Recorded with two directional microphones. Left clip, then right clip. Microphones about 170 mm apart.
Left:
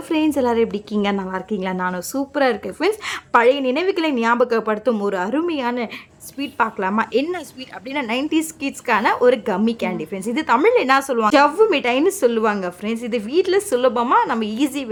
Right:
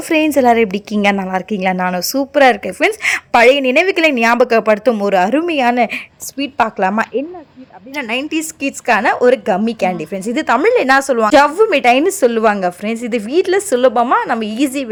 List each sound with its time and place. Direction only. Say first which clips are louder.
0.1 s a woman's voice: right 7 dB; 20° right (ahead or behind)